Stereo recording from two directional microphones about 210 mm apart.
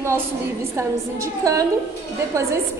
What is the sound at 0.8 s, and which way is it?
Speech, 15° right (ahead or behind).